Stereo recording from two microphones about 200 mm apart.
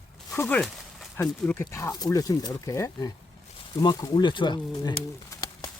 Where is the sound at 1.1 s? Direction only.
10° left (ahead or behind).